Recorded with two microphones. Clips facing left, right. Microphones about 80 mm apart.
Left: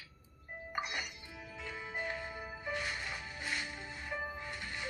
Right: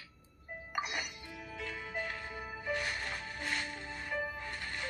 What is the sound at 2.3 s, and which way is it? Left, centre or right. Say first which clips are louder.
Music: right 2 dB; centre.